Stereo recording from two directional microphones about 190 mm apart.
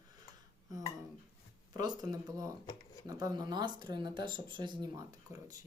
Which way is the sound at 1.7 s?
20° right (ahead or behind).